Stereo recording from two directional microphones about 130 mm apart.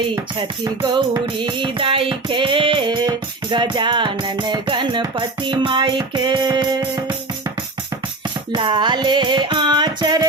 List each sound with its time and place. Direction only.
0.3 s music: 35° right (ahead or behind)
8.5 s music: 35° right (ahead or behind)